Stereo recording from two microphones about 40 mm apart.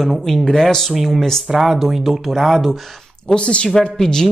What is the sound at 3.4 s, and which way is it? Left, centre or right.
Speech, left.